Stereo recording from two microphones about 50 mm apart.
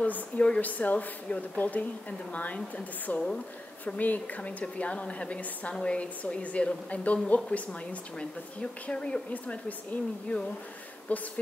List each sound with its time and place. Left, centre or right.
0.0 s a woman's voice: left
9.3 s a woman's voice: left